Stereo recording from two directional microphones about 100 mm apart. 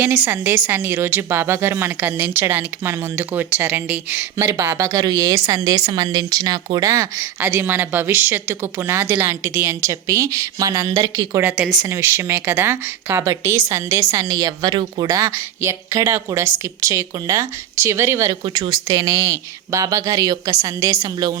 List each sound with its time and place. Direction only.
0.3 s a woman's voice: 25° right (ahead or behind)
4.4 s a woman's voice: 30° right (ahead or behind)
11.5 s speech: 5° right (ahead or behind)
11.9 s a woman's voice: 25° right (ahead or behind); by 15.1 s 45° right (ahead or behind)
15.1 s a woman's voice: 30° right (ahead or behind)
18.4 s a woman's voice: 50° right (ahead or behind)